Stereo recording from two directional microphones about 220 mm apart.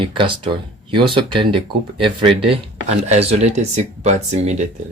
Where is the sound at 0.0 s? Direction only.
20° right (ahead or behind).